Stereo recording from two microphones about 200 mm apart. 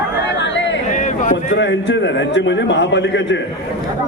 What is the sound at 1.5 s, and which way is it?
A man's voice, 65° left (ahead or behind).